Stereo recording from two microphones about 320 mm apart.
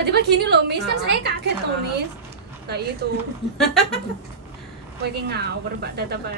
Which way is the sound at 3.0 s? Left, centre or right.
Right.